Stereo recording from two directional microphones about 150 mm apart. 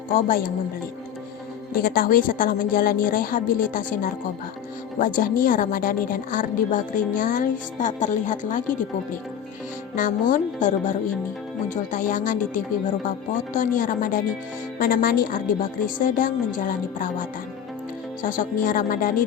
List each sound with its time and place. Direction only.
0.1 s a woman's voice: 65° left (ahead or behind)
1.7 s a woman's voice: 75° left (ahead or behind); by 8.6 s 60° left (ahead or behind)
9.9 s a woman's voice: 60° left (ahead or behind)
14.8 s a woman's voice: 75° left (ahead or behind)
16.0 s a woman's voice: 65° left (ahead or behind)